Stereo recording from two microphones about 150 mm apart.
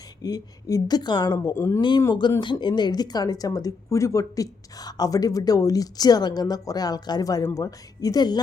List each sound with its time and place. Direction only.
0.2 s speech: 25° left (ahead or behind)
1.4 s speech: 15° left (ahead or behind)